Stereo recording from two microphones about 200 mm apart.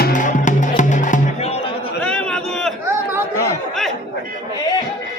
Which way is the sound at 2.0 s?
5° left (ahead or behind).